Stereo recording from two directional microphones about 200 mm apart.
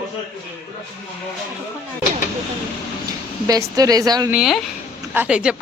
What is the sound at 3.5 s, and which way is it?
Speech, 15° right (ahead or behind).